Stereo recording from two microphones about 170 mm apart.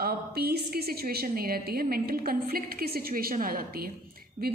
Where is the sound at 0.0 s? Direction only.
65° right (ahead or behind).